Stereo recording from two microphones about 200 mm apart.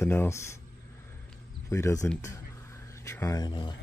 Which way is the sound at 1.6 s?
15° left (ahead or behind).